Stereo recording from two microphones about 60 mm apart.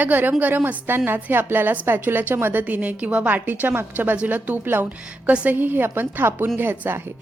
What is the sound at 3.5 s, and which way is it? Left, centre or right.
A woman's voice, right.